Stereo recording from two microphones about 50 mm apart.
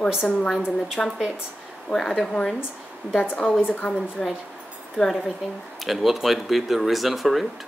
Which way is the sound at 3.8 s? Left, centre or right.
Centre.